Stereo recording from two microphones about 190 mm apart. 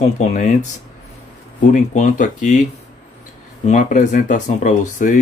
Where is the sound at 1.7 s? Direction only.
40° left (ahead or behind).